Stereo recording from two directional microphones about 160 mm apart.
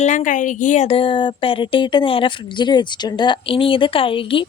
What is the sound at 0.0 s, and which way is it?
A woman's voice, 50° left (ahead or behind).